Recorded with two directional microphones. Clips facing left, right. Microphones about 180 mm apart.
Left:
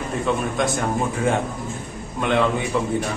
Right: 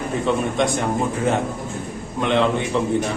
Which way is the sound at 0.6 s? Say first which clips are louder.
Right 2 dB; centre (ahead or behind).